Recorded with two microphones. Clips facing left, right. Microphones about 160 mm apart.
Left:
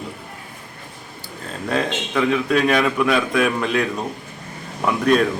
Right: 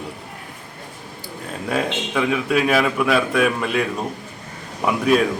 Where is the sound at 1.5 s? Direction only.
10° right (ahead or behind).